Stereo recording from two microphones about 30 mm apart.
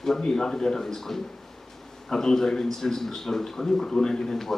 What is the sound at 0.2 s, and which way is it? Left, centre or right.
Speech, left.